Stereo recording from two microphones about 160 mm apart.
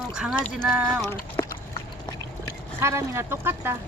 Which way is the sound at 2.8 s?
20° right (ahead or behind).